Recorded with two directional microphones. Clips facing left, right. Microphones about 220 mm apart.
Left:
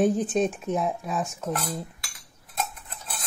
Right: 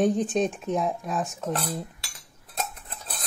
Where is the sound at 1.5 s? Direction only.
30° right (ahead or behind).